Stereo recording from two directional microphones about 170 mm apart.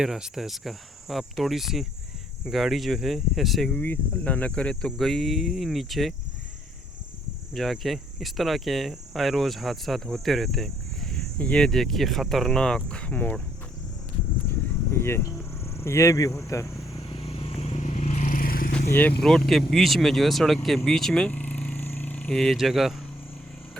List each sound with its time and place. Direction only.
0.0 s speech: 5° right (ahead or behind)
7.5 s speech: centre (ahead or behind)
14.9 s speech: 15° left (ahead or behind)
17.1 s vehicle: 30° left (ahead or behind); by 18.7 s 60° left (ahead or behind)
19.2 s speech: centre (ahead or behind)